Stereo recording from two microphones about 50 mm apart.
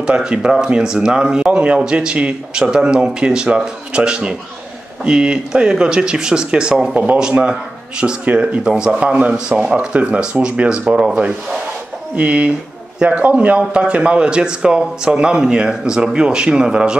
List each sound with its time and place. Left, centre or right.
0.0 s speech: centre
12.2 s speech: right